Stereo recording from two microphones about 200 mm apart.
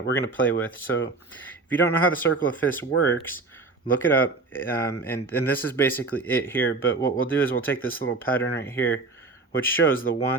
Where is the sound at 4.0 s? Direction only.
10° left (ahead or behind).